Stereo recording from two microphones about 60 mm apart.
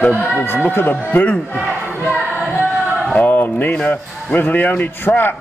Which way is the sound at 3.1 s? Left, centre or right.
Left.